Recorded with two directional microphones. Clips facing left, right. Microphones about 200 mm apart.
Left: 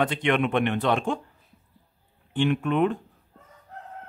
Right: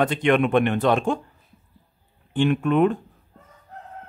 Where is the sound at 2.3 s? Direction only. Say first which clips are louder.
Right 3 dB; 45° right (ahead or behind).